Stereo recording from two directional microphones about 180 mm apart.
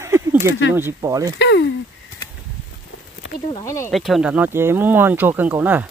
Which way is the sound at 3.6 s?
15° left (ahead or behind).